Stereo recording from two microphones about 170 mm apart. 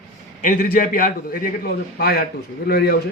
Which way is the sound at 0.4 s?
50° left (ahead or behind).